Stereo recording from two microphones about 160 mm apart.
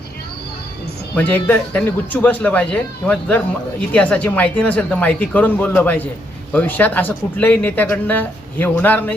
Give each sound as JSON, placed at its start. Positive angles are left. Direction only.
{"t": 1.1, "sound": "speech", "side_deg": 10}